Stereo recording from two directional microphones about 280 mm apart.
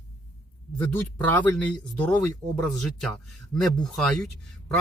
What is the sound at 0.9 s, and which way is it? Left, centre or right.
Speech, centre.